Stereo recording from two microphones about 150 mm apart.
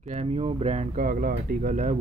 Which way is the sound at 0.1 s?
45° right (ahead or behind).